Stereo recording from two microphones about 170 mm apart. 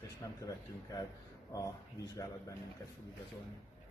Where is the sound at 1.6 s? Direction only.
20° left (ahead or behind).